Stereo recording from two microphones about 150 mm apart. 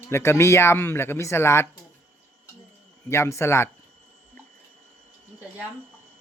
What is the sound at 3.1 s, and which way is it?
Speech, 20° left (ahead or behind).